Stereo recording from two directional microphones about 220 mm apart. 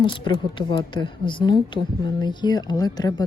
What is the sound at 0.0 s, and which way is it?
A woman's voice, 20° left (ahead or behind).